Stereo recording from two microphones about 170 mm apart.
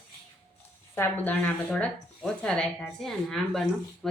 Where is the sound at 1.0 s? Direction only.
10° left (ahead or behind).